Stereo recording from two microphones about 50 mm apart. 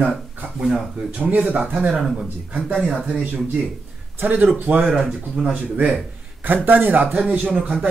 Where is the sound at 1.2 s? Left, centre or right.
Right.